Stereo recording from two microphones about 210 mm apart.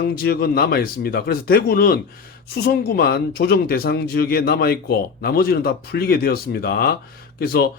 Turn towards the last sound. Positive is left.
turn(degrees=45)  # may be behind; listen again after turning